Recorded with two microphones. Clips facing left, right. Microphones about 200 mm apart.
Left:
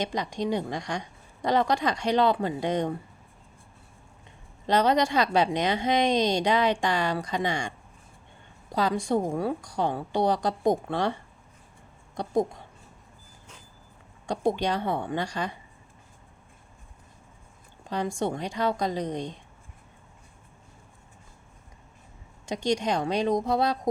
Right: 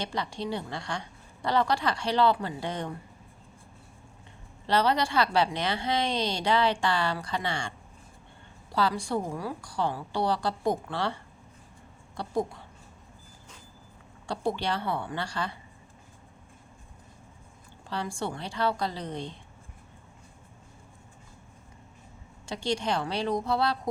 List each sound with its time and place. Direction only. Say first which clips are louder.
0.0 s a woman's voice: left 4 dB; 20° left (ahead or behind)
4.6 s a woman's voice: left 3 dB; 20° left (ahead or behind)
8.7 s a woman's voice: left 3 dB; 20° left (ahead or behind)
14.3 s a woman's voice: left 4 dB; 20° left (ahead or behind)
17.8 s a woman's voice: left 5 dB; 20° left (ahead or behind)
22.4 s a woman's voice: left 3 dB; 20° left (ahead or behind)